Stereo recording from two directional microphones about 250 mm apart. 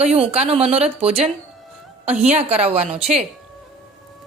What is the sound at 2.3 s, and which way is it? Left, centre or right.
Speech, right.